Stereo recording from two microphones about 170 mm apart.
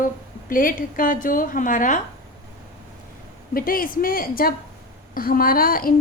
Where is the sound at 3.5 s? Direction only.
55° left (ahead or behind).